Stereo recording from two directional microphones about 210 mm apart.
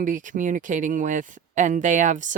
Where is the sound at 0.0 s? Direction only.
40° right (ahead or behind).